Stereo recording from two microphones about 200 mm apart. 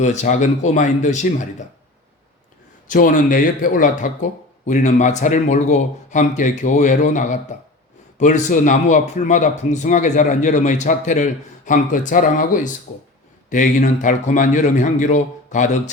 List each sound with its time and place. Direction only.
0.0 s a man's voice: 35° left (ahead or behind)
2.8 s a man's voice: 40° left (ahead or behind)